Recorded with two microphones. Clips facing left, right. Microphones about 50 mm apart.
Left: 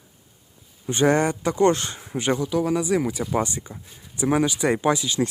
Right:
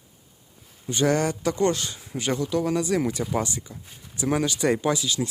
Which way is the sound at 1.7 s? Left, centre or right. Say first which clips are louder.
Left 5 dB; left.